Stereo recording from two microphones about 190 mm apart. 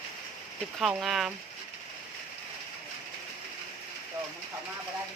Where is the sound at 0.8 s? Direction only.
Centre (ahead or behind).